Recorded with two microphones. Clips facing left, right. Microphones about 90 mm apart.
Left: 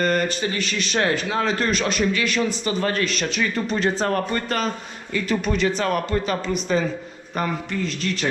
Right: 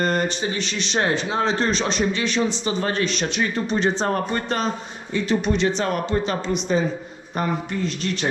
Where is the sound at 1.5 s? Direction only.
30° right (ahead or behind).